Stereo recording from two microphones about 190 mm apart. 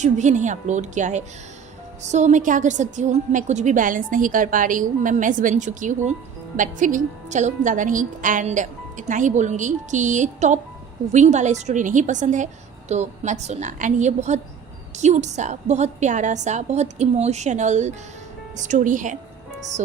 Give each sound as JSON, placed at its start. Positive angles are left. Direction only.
{"t": 0.0, "sound": "a woman's voice", "side_deg": -40}